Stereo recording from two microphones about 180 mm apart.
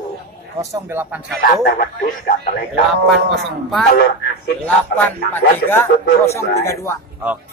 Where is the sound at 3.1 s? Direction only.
Centre (ahead or behind).